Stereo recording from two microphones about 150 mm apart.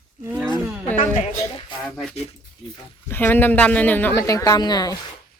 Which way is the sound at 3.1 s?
15° left (ahead or behind).